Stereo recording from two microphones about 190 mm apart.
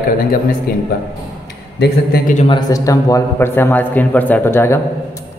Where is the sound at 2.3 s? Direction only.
30° left (ahead or behind).